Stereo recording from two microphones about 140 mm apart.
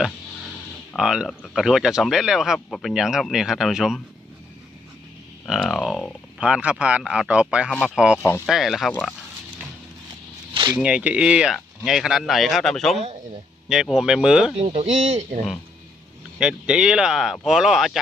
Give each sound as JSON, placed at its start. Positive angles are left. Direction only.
{"t": 0.9, "sound": "speech", "side_deg": -5}
{"t": 2.9, "sound": "speech", "side_deg": -5}
{"t": 5.5, "sound": "speech", "side_deg": 0}
{"t": 6.4, "sound": "speech", "side_deg": -10}
{"t": 7.7, "sound": "speech", "side_deg": 10}
{"t": 7.9, "sound": "speech", "side_deg": -5}
{"t": 8.9, "sound": "speech", "side_deg": 10}
{"t": 10.5, "sound": "a sound", "side_deg": -30}
{"t": 10.8, "sound": "speech", "side_deg": -5}
{"t": 14.8, "sound": "speech", "side_deg": -60}
{"t": 16.4, "sound": "speech", "side_deg": -5}